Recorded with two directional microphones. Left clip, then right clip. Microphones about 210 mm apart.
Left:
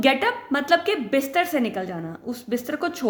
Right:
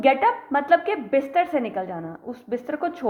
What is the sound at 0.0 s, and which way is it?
A woman's voice, 45° left (ahead or behind).